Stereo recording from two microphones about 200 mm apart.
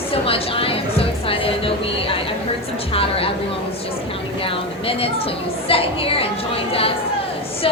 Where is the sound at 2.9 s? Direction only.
30° left (ahead or behind).